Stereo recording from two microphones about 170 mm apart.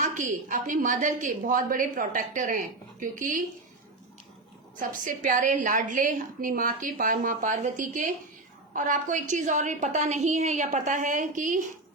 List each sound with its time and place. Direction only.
0.1 s a woman's voice: 50° right (ahead or behind)
4.8 s a woman's voice: 50° right (ahead or behind)